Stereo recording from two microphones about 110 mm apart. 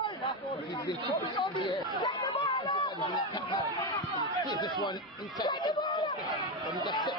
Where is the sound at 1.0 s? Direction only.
50° left (ahead or behind).